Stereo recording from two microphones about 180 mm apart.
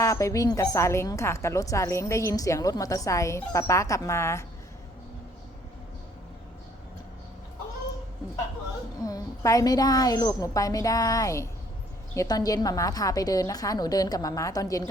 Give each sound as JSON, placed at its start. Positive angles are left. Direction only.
{"t": 0.0, "sound": "a woman's voice", "side_deg": 15}
{"t": 9.0, "sound": "a woman's voice", "side_deg": 20}